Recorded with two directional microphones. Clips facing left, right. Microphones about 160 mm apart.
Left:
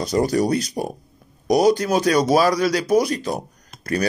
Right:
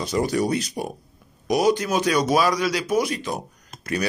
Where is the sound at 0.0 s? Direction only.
40° left (ahead or behind).